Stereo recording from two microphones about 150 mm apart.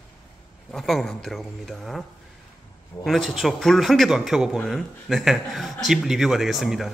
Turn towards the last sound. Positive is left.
turn(degrees=0)  # may be behind; listen again after turning